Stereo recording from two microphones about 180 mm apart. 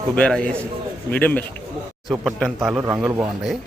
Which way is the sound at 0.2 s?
5° left (ahead or behind).